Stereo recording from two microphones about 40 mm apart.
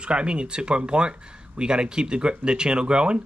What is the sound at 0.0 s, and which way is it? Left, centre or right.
Speech, right.